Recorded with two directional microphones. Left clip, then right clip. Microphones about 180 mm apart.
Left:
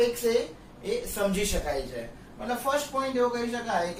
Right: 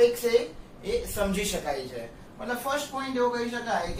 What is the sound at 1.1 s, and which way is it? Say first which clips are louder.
Speech: left 1 dB; 15° right (ahead or behind).